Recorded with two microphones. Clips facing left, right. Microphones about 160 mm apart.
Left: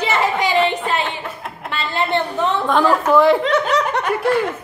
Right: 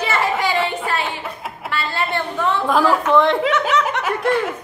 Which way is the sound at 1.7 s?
20° left (ahead or behind).